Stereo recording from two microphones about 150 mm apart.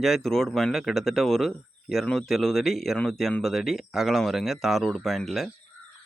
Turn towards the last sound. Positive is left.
turn(degrees=0)  # may be behind; listen again after turning